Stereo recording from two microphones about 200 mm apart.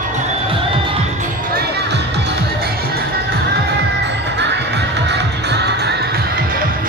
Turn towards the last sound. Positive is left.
turn(degrees=-55)  # may be behind; listen again after turning